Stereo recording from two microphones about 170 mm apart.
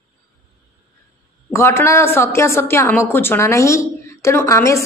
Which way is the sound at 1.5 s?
15° left (ahead or behind).